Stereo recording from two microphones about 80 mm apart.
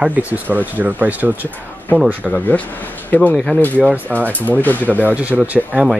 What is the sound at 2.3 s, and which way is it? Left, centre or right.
Speech, centre.